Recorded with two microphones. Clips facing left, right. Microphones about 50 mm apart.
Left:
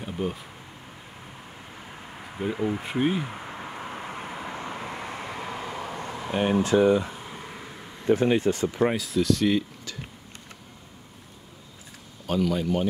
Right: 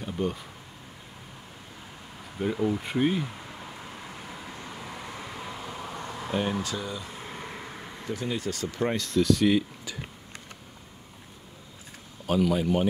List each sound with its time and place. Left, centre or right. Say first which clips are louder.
0.0 s a sound: even; centre
2.1 s a sound: left 1 dB; left
2.5 s speech: right 1 dB; left
2.8 s speech: left 1 dB; centre
3.3 s vehicle: left 5 dB; left
6.2 s speech: left 5 dB; left
8.4 s speech: left 6 dB; left
9.0 s speech: even; centre
12.3 s a man's voice: right 1 dB; centre